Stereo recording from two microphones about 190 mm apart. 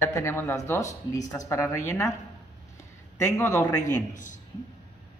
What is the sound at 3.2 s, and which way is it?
Speech, 15° left (ahead or behind).